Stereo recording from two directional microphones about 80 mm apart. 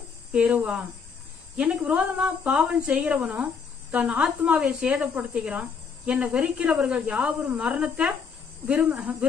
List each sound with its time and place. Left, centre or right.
0.3 s speech: centre